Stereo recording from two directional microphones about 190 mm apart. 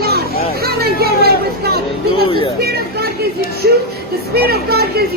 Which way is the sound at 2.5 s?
55° right (ahead or behind).